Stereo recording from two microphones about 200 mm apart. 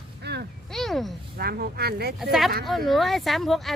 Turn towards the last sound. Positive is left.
turn(degrees=0)  # may be behind; listen again after turning